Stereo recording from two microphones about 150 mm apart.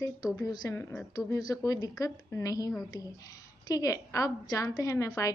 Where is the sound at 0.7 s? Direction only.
15° left (ahead or behind).